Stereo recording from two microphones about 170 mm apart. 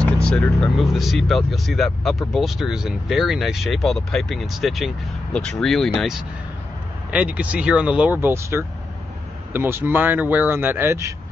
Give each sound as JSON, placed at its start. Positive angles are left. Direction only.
{"t": 0.0, "sound": "speech", "side_deg": 5}